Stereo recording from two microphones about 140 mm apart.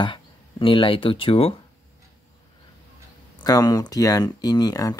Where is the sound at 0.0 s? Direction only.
35° left (ahead or behind).